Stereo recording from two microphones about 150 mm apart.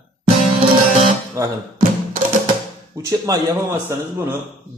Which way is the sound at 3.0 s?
25° right (ahead or behind).